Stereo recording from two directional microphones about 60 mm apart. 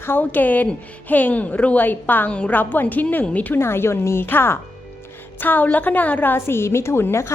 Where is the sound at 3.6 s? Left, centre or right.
Left.